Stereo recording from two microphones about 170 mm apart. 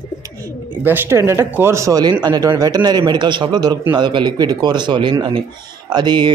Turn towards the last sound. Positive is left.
turn(degrees=-25)  # may be behind; listen again after turning